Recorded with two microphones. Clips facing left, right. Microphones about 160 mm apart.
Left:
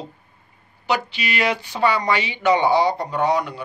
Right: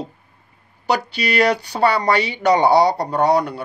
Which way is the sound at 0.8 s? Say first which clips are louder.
Right 3 dB; 40° right (ahead or behind).